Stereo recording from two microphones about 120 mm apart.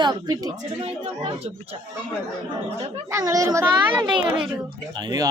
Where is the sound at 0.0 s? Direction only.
35° right (ahead or behind).